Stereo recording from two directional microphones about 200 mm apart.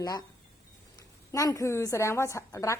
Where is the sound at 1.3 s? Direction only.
15° left (ahead or behind).